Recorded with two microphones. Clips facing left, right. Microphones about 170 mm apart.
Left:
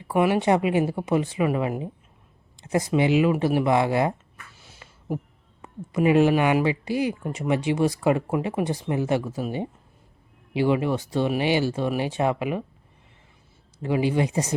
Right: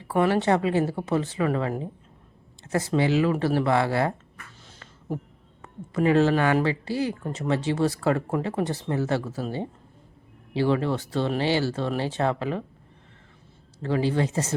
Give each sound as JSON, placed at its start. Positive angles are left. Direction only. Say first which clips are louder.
{"t": 0.1, "sound": "speech", "louder": "left 1 dB", "side_deg": 15}
{"t": 4.6, "sound": "a sound", "louder": "left 5 dB", "side_deg": 10}
{"t": 5.6, "sound": "speech", "louder": "left 1 dB", "side_deg": 15}
{"t": 13.8, "sound": "speech", "louder": "left 1 dB", "side_deg": 15}